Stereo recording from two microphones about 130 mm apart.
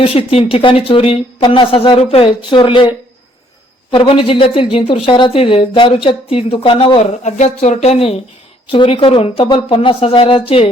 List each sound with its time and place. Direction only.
0.0 s a woman's voice: 45° left (ahead or behind)
3.9 s a woman's voice: 45° left (ahead or behind)
7.3 s a woman's voice: 65° left (ahead or behind); by 10.7 s 45° left (ahead or behind)